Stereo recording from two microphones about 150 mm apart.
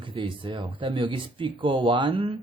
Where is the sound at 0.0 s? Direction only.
35° right (ahead or behind).